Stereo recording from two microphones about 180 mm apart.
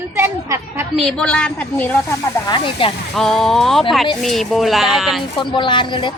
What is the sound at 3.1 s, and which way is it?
Speech, centre (ahead or behind).